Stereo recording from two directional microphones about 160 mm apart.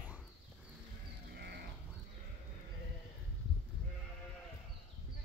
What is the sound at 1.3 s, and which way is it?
Livestock, 90° right.